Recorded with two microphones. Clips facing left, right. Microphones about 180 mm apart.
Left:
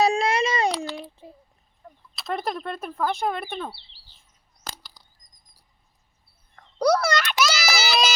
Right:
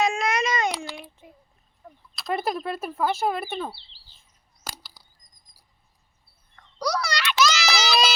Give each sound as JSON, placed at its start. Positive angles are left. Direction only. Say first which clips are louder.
{"t": 0.0, "sound": "baby cry", "louder": "left 3 dB", "side_deg": 35}
{"t": 0.9, "sound": "child singing", "louder": "left 5 dB", "side_deg": 35}
{"t": 2.1, "sound": "speech", "louder": "right 2 dB", "side_deg": 0}
{"t": 4.6, "sound": "a sound", "louder": "left 1 dB", "side_deg": -10}
{"t": 6.7, "sound": "a sound", "louder": "left 7 dB", "side_deg": 50}
{"t": 7.3, "sound": "child singing", "louder": "right 1 dB", "side_deg": 10}
{"t": 7.8, "sound": "music", "louder": "even", "side_deg": 5}